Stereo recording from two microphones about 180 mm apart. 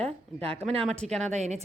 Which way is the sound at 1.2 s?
40° right (ahead or behind).